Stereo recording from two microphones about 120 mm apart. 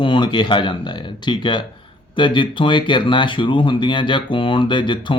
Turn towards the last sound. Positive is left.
turn(degrees=45)  # may be behind; listen again after turning